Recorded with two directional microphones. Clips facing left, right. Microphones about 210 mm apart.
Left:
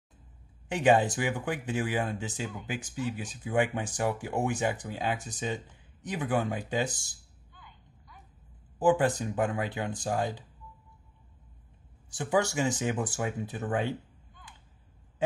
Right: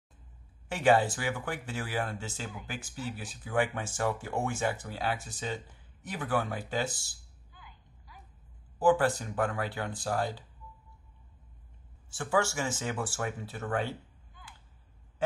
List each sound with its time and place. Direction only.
0.7 s speech: 20° left (ahead or behind)
7.5 s a sound: 5° right (ahead or behind)
8.7 s speech: 20° left (ahead or behind)
12.1 s speech: 20° left (ahead or behind)